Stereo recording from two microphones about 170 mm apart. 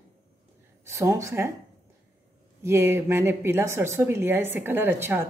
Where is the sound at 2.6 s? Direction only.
15° right (ahead or behind).